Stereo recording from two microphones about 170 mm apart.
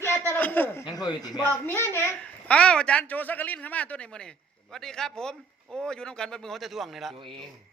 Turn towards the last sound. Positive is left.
turn(degrees=0)  # may be behind; listen again after turning